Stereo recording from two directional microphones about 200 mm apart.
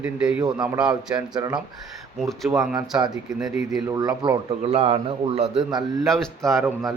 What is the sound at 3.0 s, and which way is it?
A man's voice, 20° right (ahead or behind).